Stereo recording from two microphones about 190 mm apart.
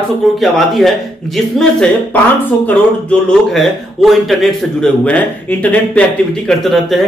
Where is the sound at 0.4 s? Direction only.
Centre (ahead or behind).